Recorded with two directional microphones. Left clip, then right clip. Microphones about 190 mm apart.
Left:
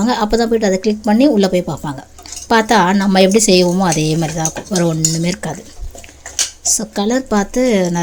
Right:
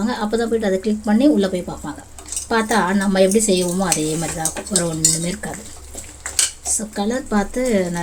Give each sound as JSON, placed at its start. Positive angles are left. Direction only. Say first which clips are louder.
{"t": 0.0, "sound": "speech", "louder": "left 6 dB", "side_deg": 40}
{"t": 6.7, "sound": "speech", "louder": "left 5 dB", "side_deg": 40}